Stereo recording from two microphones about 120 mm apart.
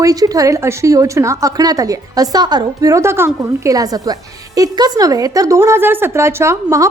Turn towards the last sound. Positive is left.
turn(degrees=-25)  # may be behind; listen again after turning